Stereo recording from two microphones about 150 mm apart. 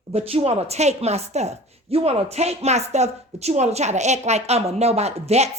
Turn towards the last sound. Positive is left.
turn(degrees=-45)  # may be behind; listen again after turning